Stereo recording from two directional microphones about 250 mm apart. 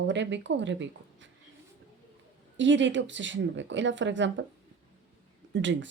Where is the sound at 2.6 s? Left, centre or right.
Right.